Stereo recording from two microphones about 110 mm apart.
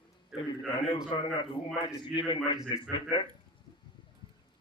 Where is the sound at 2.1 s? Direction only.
50° left (ahead or behind).